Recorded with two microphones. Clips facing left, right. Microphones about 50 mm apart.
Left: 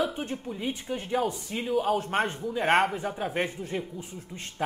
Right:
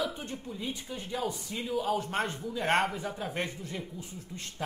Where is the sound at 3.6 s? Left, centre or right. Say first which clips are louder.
Left 6 dB; left.